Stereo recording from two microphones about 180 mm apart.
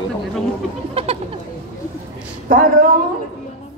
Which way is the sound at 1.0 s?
30° right (ahead or behind).